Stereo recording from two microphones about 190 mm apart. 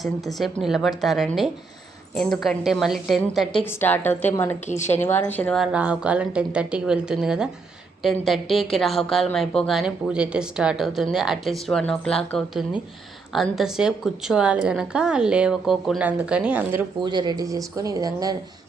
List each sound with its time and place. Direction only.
0.0 s a woman's voice: centre (ahead or behind)
5.7 s a woman's voice: 5° right (ahead or behind)
17.0 s speech: 25° right (ahead or behind)